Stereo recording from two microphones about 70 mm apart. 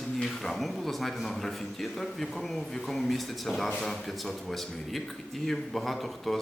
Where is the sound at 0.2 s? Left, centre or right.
Centre.